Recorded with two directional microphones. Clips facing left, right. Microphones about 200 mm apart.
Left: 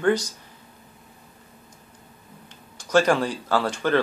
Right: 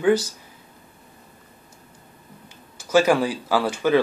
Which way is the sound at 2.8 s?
5° right (ahead or behind).